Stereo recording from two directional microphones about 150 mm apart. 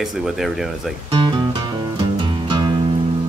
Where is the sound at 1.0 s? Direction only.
35° right (ahead or behind).